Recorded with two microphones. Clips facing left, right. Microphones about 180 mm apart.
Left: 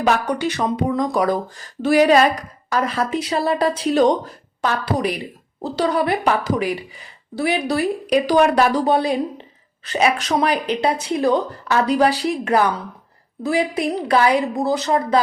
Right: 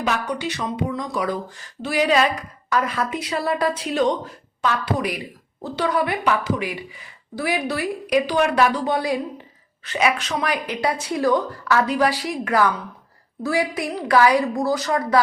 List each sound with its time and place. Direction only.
0.0 s a woman's voice: 45° left (ahead or behind); by 15.2 s 20° left (ahead or behind)